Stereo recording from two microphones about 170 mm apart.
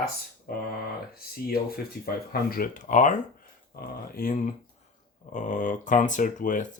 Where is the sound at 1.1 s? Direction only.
65° left (ahead or behind); by 3.1 s 45° left (ahead or behind).